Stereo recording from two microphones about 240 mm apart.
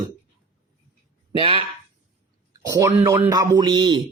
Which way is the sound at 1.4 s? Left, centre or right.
Right.